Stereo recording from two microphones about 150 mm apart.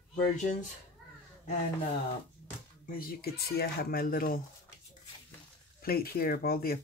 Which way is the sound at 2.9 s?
85° left.